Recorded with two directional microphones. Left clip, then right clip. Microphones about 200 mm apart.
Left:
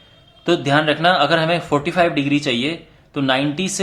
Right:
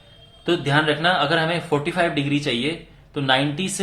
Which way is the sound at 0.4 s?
30° left (ahead or behind).